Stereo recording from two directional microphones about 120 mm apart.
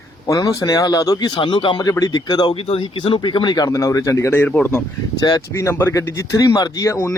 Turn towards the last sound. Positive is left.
turn(degrees=25)  # may be behind; listen again after turning